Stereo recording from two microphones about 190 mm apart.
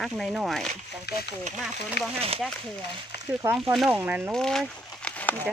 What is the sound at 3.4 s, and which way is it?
Speech, 10° right (ahead or behind).